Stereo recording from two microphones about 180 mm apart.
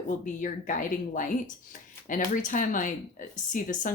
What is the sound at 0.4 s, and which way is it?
Speech, 45° left (ahead or behind).